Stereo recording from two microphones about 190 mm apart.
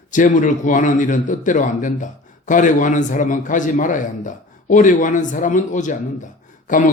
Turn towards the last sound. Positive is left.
turn(degrees=45)  # may be behind; listen again after turning